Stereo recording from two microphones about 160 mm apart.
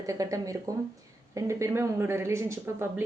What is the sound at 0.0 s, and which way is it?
A woman's voice, 20° right (ahead or behind).